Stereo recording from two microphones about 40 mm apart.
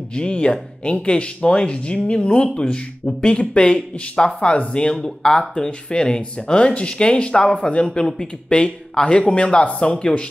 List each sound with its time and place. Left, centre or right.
0.1 s speech: left